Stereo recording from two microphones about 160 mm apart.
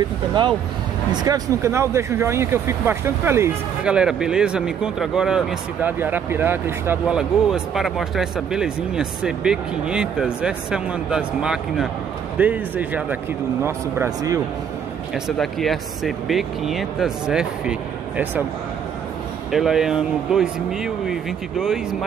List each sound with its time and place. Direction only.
1.2 s speech: 20° right (ahead or behind)
15.2 s speech: centre (ahead or behind)
19.5 s speech: centre (ahead or behind)